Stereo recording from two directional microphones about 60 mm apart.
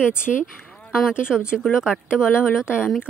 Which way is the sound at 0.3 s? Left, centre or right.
Centre.